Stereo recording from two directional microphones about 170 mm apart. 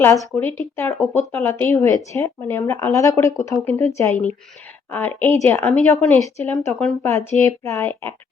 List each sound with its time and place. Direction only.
0.0 s speech: 15° left (ahead or behind)